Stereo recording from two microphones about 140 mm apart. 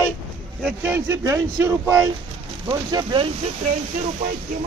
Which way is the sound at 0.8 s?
15° right (ahead or behind).